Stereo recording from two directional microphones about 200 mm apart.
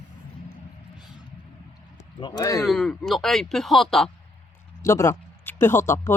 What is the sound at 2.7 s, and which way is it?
Speech, centre (ahead or behind).